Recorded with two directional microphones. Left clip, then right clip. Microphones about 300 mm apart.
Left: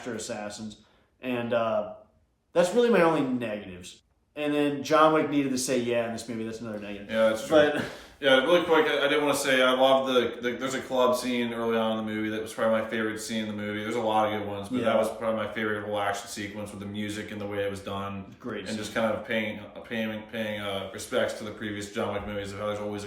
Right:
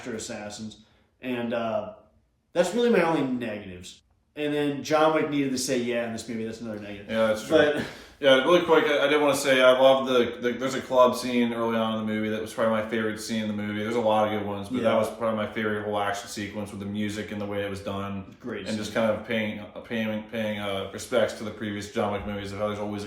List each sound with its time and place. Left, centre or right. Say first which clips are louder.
0.2 s speech: left 1 dB; centre
7.1 s speech: even; centre
8.4 s speech: right 2 dB; centre